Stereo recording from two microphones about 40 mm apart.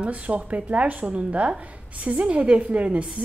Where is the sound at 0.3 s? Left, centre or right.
Right.